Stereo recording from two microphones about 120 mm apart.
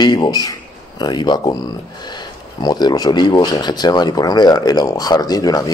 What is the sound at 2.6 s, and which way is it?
Speech, 35° left (ahead or behind).